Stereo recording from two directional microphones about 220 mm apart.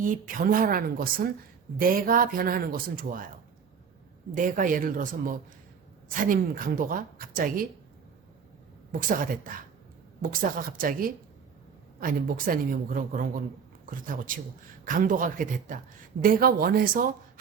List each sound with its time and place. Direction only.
0.0 s a woman's voice: 35° right (ahead or behind)
4.4 s a woman's voice: 35° right (ahead or behind)
8.9 s a woman's voice: 40° right (ahead or behind)